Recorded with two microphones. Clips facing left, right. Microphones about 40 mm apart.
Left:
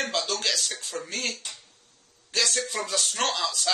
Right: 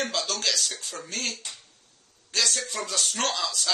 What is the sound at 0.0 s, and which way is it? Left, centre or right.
Speech, centre.